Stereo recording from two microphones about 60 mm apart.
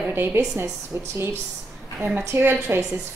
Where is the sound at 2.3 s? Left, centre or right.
Right.